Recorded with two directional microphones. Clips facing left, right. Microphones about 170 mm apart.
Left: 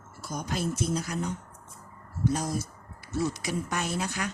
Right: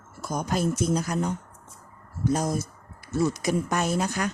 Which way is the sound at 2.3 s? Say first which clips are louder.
Right 4 dB; 45° right (ahead or behind).